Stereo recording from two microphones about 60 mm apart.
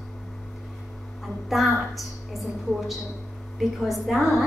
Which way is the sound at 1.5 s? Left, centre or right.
Centre.